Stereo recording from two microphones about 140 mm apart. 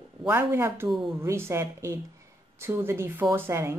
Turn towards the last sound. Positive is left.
turn(degrees=-15)  # may be behind; listen again after turning